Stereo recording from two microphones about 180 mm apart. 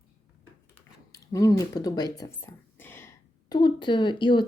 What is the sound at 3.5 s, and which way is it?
Speech, 25° left (ahead or behind).